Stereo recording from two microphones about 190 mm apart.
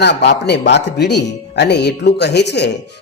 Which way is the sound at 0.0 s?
60° left (ahead or behind).